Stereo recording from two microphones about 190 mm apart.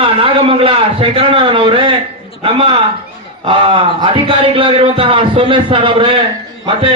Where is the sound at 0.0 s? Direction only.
30° right (ahead or behind).